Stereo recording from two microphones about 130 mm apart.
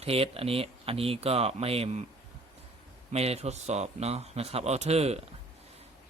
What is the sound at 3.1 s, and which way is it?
Speech, 55° right (ahead or behind).